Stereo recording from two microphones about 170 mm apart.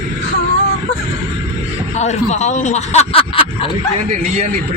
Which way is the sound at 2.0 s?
45° left (ahead or behind).